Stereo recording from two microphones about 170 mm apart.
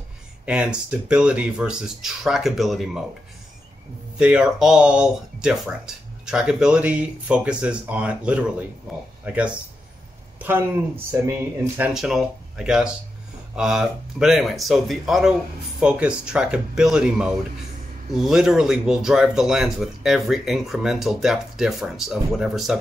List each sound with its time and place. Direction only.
0.5 s speech: 5° right (ahead or behind)
4.2 s speech: 5° right (ahead or behind)
11.1 s speech: 15° right (ahead or behind)